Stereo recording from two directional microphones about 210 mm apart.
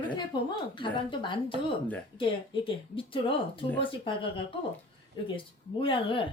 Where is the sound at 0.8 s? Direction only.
25° left (ahead or behind).